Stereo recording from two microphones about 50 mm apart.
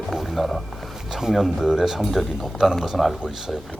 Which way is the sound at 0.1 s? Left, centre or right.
Centre.